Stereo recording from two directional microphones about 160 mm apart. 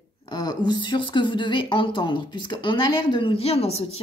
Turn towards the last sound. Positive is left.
turn(degrees=40)  # may be behind; listen again after turning